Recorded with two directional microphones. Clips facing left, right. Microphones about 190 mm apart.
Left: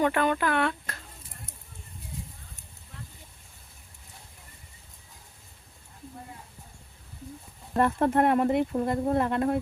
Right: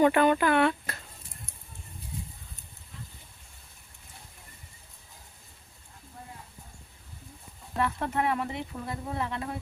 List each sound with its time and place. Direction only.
0.0 s speech: 5° right (ahead or behind)
7.8 s speech: 50° left (ahead or behind)